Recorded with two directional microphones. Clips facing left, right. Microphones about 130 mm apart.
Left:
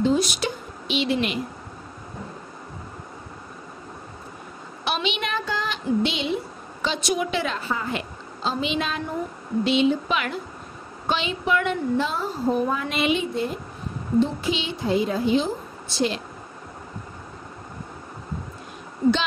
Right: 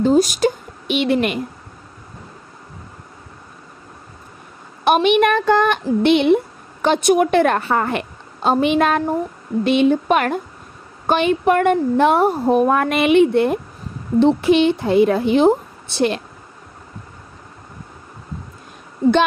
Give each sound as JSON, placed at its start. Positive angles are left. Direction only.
{"t": 0.0, "sound": "a woman's voice", "side_deg": -45}
{"t": 4.8, "sound": "a woman's voice", "side_deg": -55}